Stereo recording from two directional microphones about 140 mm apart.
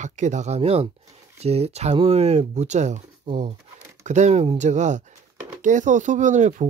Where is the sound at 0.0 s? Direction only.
60° right (ahead or behind).